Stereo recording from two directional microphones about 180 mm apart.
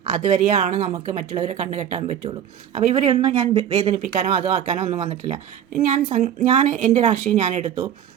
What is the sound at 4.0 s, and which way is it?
Speech, 50° right (ahead or behind).